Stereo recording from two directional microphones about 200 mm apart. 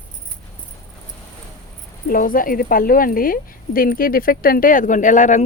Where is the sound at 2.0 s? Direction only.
45° left (ahead or behind).